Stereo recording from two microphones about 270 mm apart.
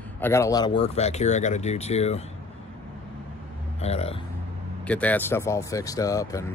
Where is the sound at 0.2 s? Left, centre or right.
Centre.